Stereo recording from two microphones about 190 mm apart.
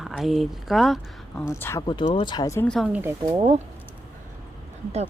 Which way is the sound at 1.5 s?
15° left (ahead or behind).